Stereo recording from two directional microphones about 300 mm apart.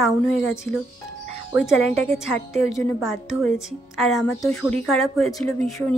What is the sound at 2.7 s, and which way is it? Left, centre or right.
A woman's voice, centre.